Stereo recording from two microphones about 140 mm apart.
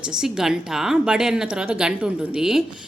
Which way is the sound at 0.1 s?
5° right (ahead or behind).